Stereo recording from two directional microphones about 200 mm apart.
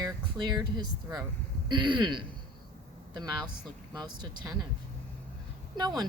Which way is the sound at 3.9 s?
20° right (ahead or behind).